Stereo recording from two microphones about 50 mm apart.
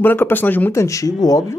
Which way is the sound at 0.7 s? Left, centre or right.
Left.